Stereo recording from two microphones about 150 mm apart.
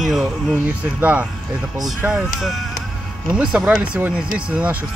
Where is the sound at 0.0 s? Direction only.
Centre (ahead or behind).